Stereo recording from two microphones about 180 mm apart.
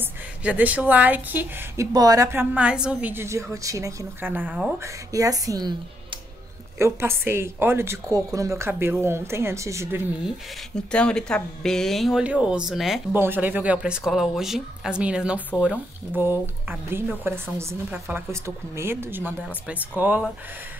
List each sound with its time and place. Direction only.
0.4 s a woman's voice: 10° right (ahead or behind)
5.1 s speech: 20° right (ahead or behind)
6.8 s a woman's voice: 15° right (ahead or behind)
10.9 s speech: 5° left (ahead or behind)
13.1 s a woman's voice: 10° right (ahead or behind)